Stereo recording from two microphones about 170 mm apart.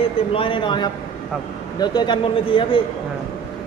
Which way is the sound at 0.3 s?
30° left (ahead or behind).